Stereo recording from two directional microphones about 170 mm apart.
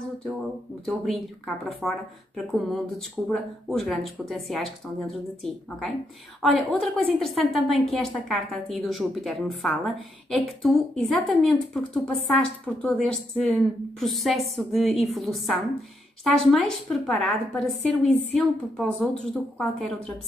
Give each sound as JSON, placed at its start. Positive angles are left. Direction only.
{"t": 0.8, "sound": "a woman's voice", "side_deg": 0}